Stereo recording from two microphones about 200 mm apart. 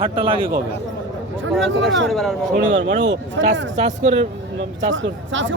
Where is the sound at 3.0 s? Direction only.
65° right (ahead or behind).